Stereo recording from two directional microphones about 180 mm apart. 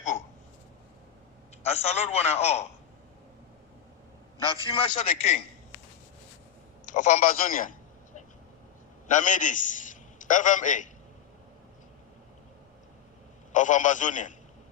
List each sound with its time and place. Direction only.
1.6 s a man's voice: 35° left (ahead or behind)
4.7 s a man's voice: 30° left (ahead or behind)
6.8 s a man's voice: 45° left (ahead or behind)
9.0 s a man's voice: 45° left (ahead or behind)
13.5 s a man's voice: 45° left (ahead or behind)